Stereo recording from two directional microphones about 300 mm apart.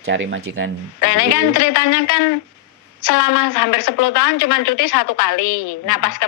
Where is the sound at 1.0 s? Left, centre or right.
Left.